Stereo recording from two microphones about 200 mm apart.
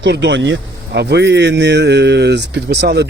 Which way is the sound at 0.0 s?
65° right (ahead or behind).